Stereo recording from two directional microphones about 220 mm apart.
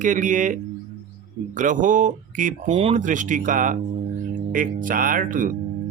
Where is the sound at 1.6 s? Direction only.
35° right (ahead or behind).